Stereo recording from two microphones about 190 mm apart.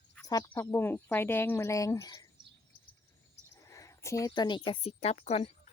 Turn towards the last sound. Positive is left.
turn(degrees=30)  # may be behind; listen again after turning